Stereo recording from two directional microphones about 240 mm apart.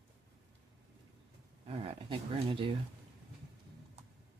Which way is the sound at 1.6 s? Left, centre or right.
Right.